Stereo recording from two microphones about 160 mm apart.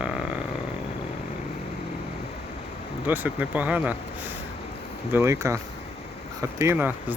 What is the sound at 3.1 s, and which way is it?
Speech, 10° right (ahead or behind).